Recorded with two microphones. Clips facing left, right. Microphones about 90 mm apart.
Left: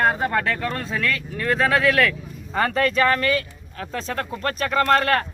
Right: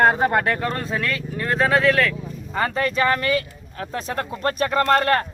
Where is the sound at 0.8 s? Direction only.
5° right (ahead or behind).